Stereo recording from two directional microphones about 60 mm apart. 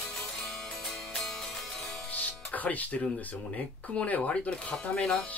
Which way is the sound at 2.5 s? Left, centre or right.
Left.